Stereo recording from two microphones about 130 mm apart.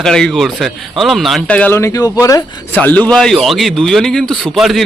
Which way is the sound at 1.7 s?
25° left (ahead or behind).